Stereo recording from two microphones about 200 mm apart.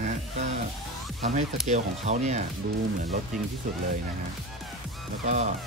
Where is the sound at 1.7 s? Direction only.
35° right (ahead or behind).